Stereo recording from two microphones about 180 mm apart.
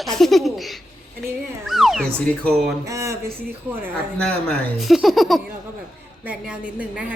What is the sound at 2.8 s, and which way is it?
Speech, 15° right (ahead or behind).